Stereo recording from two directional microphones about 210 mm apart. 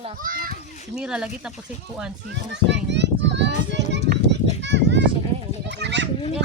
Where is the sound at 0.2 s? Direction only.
40° right (ahead or behind).